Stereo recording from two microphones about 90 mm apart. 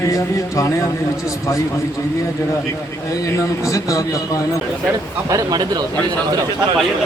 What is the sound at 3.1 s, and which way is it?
Speech, 40° left (ahead or behind).